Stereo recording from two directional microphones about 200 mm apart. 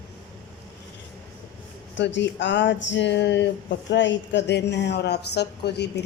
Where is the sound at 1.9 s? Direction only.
65° left (ahead or behind).